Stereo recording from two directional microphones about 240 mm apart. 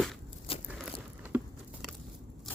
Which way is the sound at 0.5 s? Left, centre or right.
Left.